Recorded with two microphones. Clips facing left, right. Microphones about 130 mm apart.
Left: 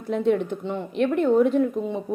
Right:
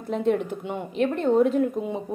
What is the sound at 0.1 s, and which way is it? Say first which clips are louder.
A woman's voice: left 2 dB; centre (ahead or behind).